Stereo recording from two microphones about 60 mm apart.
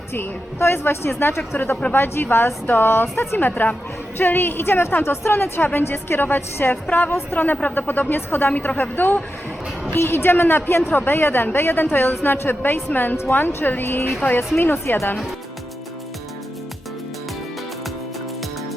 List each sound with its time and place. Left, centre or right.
0.1 s a woman's voice: left
1.4 s speech: left
7.1 s a woman's voice: left
7.3 s speech: left